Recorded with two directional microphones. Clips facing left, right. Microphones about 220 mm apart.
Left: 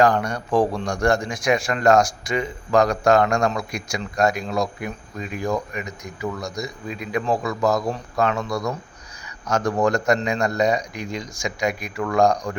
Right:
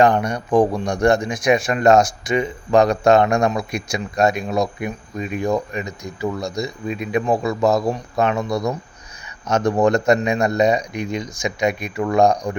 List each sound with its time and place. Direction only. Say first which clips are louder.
0.0 s speech: right 2 dB; 20° right (ahead or behind)